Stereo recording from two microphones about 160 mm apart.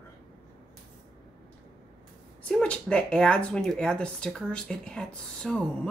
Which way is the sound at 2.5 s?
5° left (ahead or behind).